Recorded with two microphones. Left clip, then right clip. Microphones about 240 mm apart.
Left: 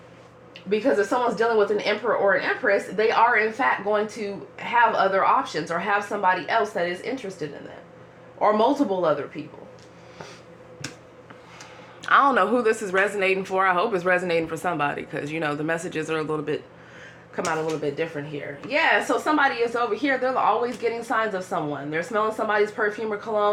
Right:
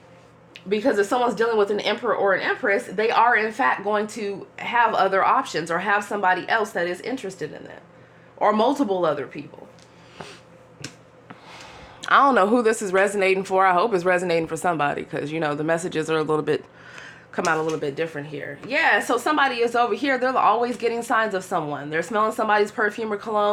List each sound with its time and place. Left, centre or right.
0.7 s speech: right
12.0 s speech: right